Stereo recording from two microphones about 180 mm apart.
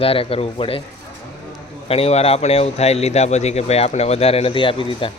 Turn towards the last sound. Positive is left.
turn(degrees=30)  # may be behind; listen again after turning